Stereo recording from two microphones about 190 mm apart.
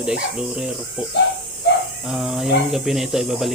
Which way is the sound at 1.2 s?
65° left (ahead or behind).